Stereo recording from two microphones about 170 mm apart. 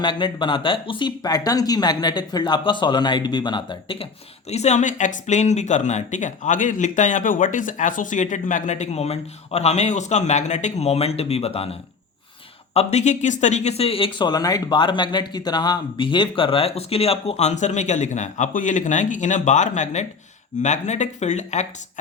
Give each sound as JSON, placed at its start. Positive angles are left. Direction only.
{"t": 0.0, "sound": "speech", "side_deg": 30}
{"t": 4.4, "sound": "speech", "side_deg": 40}